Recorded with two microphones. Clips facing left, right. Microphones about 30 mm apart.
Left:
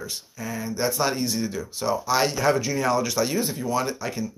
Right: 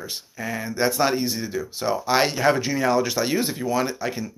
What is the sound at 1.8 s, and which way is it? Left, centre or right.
Speech, right.